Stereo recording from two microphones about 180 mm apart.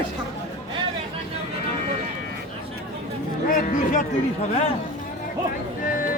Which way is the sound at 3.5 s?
45° left (ahead or behind).